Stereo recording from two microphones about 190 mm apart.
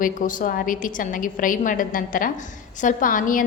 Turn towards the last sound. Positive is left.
turn(degrees=45)  # may be behind; listen again after turning